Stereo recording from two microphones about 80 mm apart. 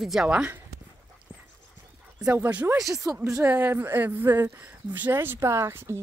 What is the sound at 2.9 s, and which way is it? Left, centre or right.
Speech, right.